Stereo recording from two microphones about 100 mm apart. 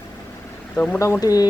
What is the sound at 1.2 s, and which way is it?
Speech, 40° left (ahead or behind).